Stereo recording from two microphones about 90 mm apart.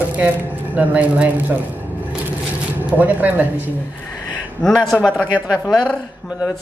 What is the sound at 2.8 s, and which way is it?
Speech, 20° right (ahead or behind).